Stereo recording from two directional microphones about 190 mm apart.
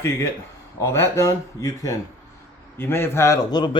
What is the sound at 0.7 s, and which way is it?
A man's voice, 15° left (ahead or behind).